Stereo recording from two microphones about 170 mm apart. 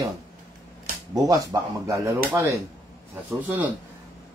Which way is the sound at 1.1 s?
20° right (ahead or behind).